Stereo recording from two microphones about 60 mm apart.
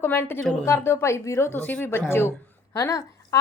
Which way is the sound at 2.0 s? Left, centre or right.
Left.